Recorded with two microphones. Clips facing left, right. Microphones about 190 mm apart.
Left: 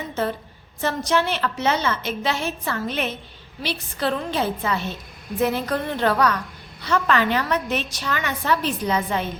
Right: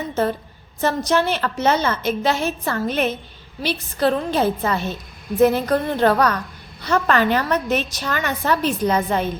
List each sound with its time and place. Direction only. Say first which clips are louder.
0.2 s a woman's voice: right 4 dB; 40° right (ahead or behind)